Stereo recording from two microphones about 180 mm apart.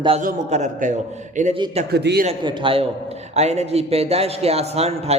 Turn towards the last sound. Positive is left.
turn(degrees=-35)  # may be behind; listen again after turning